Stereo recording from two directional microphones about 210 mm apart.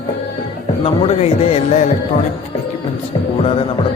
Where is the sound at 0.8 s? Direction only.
30° left (ahead or behind).